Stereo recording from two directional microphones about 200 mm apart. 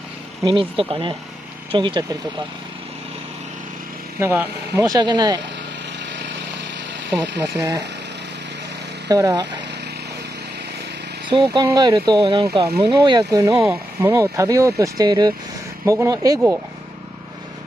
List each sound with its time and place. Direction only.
0.4 s speech: 25° right (ahead or behind)
4.2 s speech: 15° right (ahead or behind)
7.2 s speech: 15° right (ahead or behind)
9.1 s speech: 20° right (ahead or behind)
11.2 s speech: 20° right (ahead or behind)